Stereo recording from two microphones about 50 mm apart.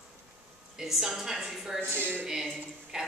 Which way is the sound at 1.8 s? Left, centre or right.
Right.